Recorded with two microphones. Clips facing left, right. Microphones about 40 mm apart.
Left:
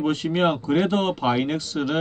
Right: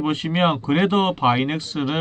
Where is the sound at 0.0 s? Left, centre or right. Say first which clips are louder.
Right 1 dB; right.